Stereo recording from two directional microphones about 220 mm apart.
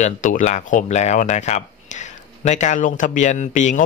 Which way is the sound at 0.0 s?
35° left (ahead or behind).